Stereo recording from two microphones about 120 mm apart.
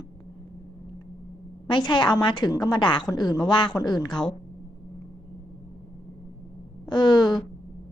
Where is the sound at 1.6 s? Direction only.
40° left (ahead or behind).